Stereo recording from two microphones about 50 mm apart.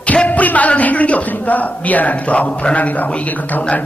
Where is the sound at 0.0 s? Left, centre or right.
Left.